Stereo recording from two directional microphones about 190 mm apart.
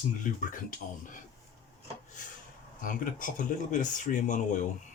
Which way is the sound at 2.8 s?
45° left (ahead or behind).